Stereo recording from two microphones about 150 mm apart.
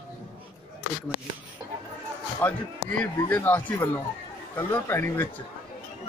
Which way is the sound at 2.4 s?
10° left (ahead or behind).